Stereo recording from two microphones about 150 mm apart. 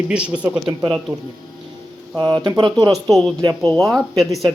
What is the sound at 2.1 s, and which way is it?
Speech, 25° right (ahead or behind).